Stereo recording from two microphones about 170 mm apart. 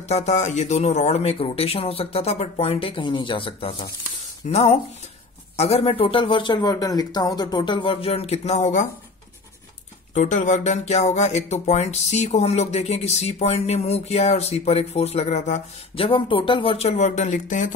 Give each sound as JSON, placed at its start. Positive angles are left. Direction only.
{"t": 0.1, "sound": "speech", "side_deg": 40}
{"t": 10.1, "sound": "speech", "side_deg": 45}
{"t": 16.1, "sound": "speech", "side_deg": 30}